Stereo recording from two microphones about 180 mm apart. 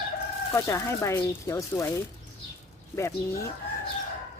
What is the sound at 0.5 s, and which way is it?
Speech, 15° left (ahead or behind).